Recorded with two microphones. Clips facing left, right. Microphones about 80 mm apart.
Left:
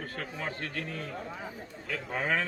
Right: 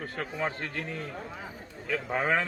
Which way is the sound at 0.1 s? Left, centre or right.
Right.